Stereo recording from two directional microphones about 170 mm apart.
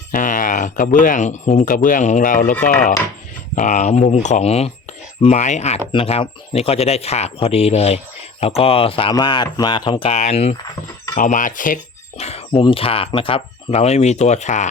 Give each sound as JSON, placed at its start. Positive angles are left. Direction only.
{"t": 0.1, "sound": "speech", "side_deg": 50}
{"t": 10.2, "sound": "speech", "side_deg": 40}